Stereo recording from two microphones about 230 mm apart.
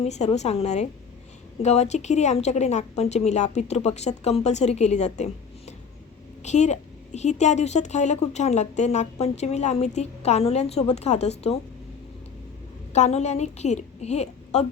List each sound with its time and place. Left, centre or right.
0.0 s a woman's voice: left
12.9 s a woman's voice: left